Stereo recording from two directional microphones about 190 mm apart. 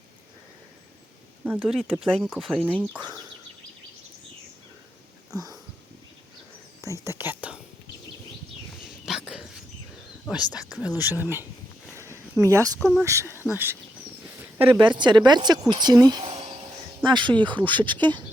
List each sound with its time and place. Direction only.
1.5 s speech: 5° right (ahead or behind)
5.3 s a sound: 20° right (ahead or behind)
6.8 s whispering: 15° right (ahead or behind)
8.8 s whispering: 5° right (ahead or behind)
10.7 s speech: 5° right (ahead or behind)
11.9 s a sound: 15° right (ahead or behind)
12.8 s speech: 5° left (ahead or behind)
13.1 s speech: 15° right (ahead or behind)
14.8 s speech: 25° right (ahead or behind)